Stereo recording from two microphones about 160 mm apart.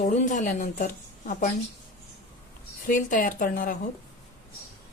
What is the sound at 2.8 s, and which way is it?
Speech, 60° left (ahead or behind).